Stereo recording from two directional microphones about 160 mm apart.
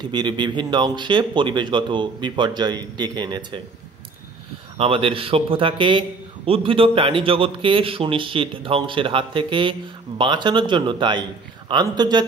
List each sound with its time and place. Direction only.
0.0 s speech: 25° right (ahead or behind)
4.7 s a man's voice: 35° right (ahead or behind)